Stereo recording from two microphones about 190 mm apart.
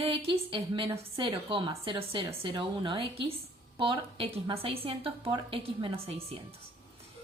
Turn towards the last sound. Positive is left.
turn(degrees=-30)  # may be behind; listen again after turning